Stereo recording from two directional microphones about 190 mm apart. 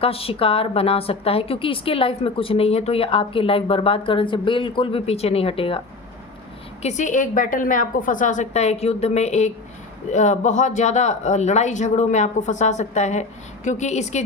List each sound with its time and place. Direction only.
0.0 s a woman's voice: 30° left (ahead or behind)
6.8 s speech: 40° left (ahead or behind)